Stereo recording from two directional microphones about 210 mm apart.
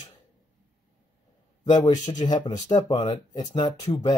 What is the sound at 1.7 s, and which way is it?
Speech, 20° left (ahead or behind).